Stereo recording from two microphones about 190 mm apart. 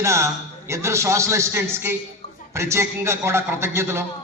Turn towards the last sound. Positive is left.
turn(degrees=-15)  # may be behind; listen again after turning